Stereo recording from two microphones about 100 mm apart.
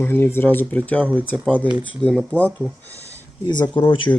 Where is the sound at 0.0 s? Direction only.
20° left (ahead or behind).